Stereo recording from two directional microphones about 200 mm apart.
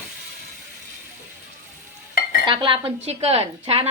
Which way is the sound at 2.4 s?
25° right (ahead or behind).